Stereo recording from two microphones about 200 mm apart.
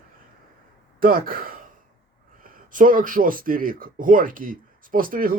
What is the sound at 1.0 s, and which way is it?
Speech, 45° right (ahead or behind).